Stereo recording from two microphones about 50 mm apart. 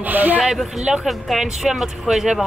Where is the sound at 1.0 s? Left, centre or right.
Centre.